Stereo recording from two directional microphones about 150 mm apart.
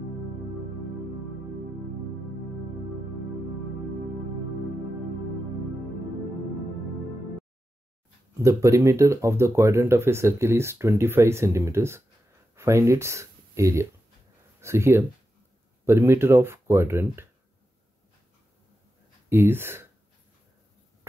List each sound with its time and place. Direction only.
8.4 s speech: 20° right (ahead or behind)
19.2 s speech: 15° right (ahead or behind)